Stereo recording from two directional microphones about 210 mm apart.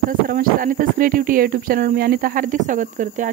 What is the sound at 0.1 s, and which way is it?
Speech, 40° right (ahead or behind).